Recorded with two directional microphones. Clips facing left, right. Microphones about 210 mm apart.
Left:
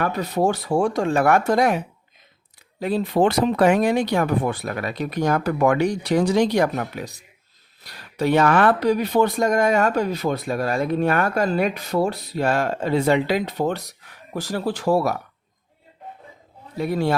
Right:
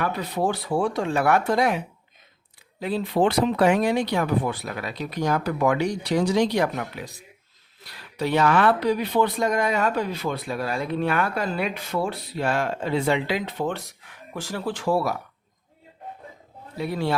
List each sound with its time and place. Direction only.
0.0 s speech: 45° left (ahead or behind)
2.8 s speech: 45° left (ahead or behind)
16.7 s speech: 45° left (ahead or behind)